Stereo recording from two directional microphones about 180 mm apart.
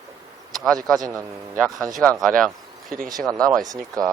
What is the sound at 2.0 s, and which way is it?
Speech, 5° left (ahead or behind).